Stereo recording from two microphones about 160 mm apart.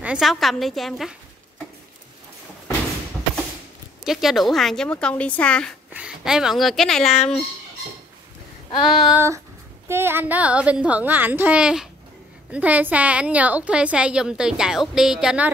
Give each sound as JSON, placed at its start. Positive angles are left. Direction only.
{"t": 0.0, "sound": "speech", "side_deg": -5}
{"t": 4.0, "sound": "speech", "side_deg": 0}
{"t": 5.9, "sound": "a woman's voice", "side_deg": -5}
{"t": 8.6, "sound": "child singing", "side_deg": 30}
{"t": 9.1, "sound": "a woman's voice", "side_deg": -15}